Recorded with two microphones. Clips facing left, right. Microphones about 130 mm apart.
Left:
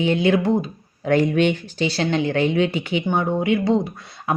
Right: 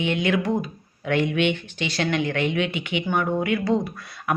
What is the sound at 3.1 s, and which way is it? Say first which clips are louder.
A woman's voice: left 3 dB; 25° left (ahead or behind).